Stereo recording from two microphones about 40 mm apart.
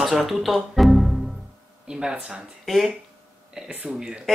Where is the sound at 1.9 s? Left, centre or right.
Centre.